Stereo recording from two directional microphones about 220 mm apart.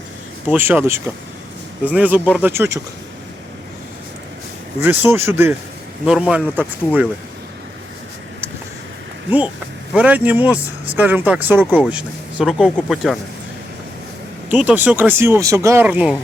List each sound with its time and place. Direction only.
0.5 s speech: 10° right (ahead or behind)
4.8 s speech: 10° right (ahead or behind)
9.9 s speech: 5° right (ahead or behind)
14.5 s speech: 5° right (ahead or behind)